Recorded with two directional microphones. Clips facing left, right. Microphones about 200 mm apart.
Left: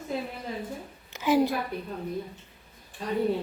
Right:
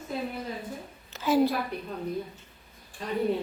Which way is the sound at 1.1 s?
15° left (ahead or behind).